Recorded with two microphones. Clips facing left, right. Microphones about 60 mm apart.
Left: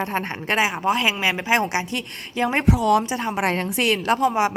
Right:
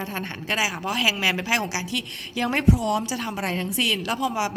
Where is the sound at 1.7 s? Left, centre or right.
Left.